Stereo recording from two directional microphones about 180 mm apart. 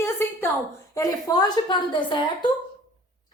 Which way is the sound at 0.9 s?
20° left (ahead or behind).